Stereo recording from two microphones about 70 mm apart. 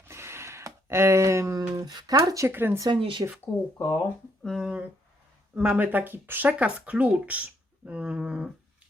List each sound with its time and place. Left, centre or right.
0.1 s a sound: right
1.7 s speech: right
2.1 s speech: right
2.5 s speech: right
2.7 s speech: right
3.5 s speech: centre
4.4 s speech: centre
5.5 s speech: centre